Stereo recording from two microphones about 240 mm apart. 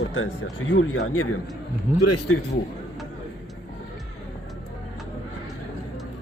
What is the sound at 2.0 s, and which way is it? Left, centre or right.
Speech, left.